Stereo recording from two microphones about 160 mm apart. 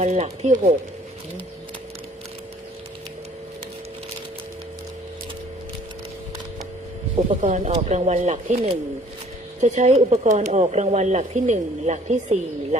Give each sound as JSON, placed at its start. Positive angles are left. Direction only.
{"t": 0.0, "sound": "speech", "side_deg": -45}
{"t": 7.4, "sound": "speech", "side_deg": -50}
{"t": 9.6, "sound": "speech", "side_deg": -45}